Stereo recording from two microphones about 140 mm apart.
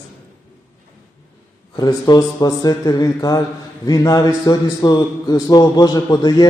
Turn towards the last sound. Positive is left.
turn(degrees=30)  # may be behind; listen again after turning